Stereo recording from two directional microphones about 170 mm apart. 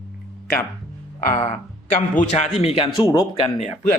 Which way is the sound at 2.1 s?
45° left (ahead or behind).